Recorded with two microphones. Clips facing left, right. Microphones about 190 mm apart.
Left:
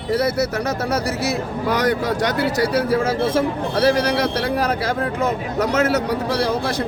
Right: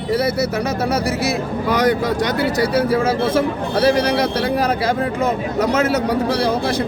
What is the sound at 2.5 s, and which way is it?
A man's voice, 10° right (ahead or behind).